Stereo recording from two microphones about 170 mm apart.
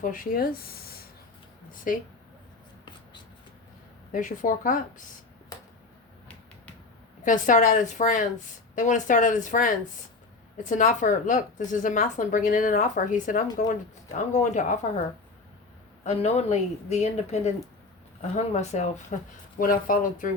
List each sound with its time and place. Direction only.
0.0 s speech: 55° left (ahead or behind)
1.7 s a woman's voice: 55° left (ahead or behind)
4.1 s a woman's voice: 50° left (ahead or behind)
7.3 s a woman's voice: 50° left (ahead or behind)
16.0 s a woman's voice: 40° left (ahead or behind)